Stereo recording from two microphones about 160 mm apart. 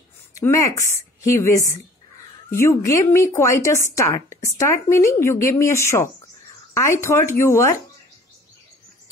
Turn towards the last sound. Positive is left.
turn(degrees=15)  # may be behind; listen again after turning